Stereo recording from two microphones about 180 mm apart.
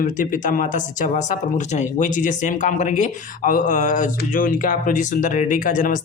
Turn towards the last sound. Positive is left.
turn(degrees=45)  # may be behind; listen again after turning